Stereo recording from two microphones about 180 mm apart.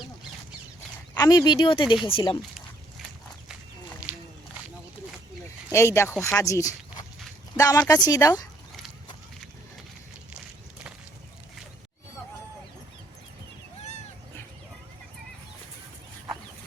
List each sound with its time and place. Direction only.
1.1 s speech: 20° left (ahead or behind)
5.7 s speech: 15° left (ahead or behind)